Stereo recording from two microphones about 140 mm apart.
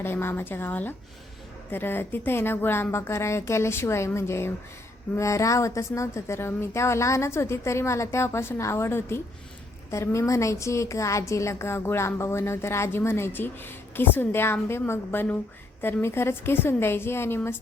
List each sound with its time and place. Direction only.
0.0 s a woman's voice: 15° left (ahead or behind)